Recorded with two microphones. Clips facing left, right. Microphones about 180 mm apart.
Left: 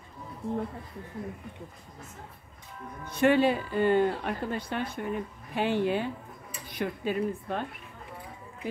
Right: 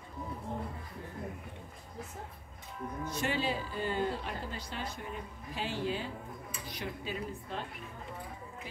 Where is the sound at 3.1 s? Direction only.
60° left (ahead or behind).